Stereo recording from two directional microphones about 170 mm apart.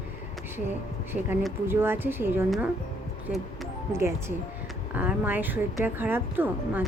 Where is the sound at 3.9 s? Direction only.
15° right (ahead or behind).